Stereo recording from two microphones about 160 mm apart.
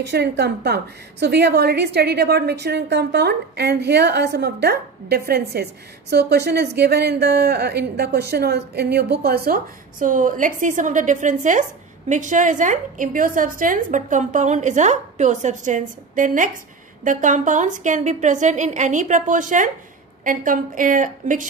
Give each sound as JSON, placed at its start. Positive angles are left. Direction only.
{"t": 0.1, "sound": "a woman's voice", "side_deg": -90}